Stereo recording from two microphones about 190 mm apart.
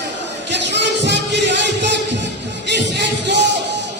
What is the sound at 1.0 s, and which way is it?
Music, 65° right (ahead or behind).